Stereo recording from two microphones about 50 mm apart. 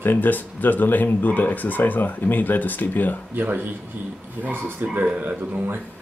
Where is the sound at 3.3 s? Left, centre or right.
Right.